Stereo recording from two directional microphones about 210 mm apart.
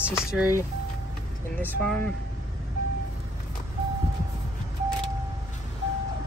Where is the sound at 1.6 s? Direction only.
5° left (ahead or behind).